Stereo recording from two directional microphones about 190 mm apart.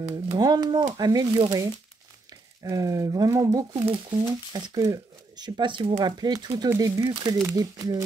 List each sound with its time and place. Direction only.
0.4 s speech: 20° right (ahead or behind)